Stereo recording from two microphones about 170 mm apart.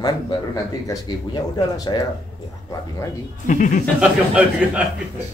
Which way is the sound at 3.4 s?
50° left (ahead or behind).